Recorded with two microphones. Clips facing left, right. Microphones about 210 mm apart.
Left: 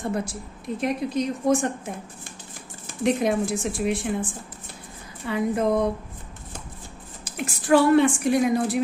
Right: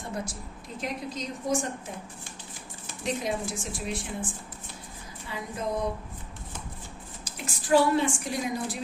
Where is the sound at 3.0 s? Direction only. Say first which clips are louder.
Left 8 dB; 60° left (ahead or behind).